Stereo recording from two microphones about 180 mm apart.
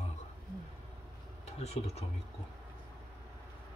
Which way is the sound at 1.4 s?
35° left (ahead or behind).